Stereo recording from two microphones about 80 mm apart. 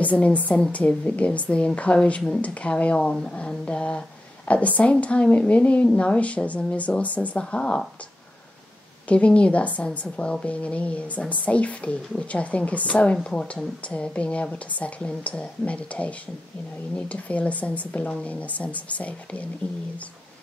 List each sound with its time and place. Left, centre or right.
0.0 s a woman's voice: centre
9.1 s a woman's voice: centre